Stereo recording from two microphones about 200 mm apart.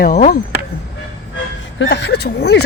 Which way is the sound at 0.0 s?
45° left (ahead or behind).